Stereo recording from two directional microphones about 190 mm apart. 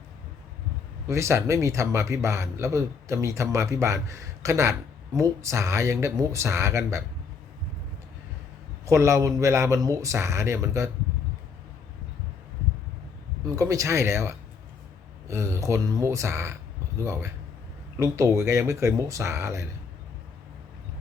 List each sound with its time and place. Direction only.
1.0 s speech: 15° right (ahead or behind)
8.9 s speech: 15° right (ahead or behind)
13.4 s speech: 15° right (ahead or behind)